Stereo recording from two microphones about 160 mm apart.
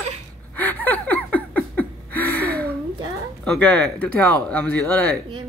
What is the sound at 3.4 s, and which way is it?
Speech, 5° left (ahead or behind).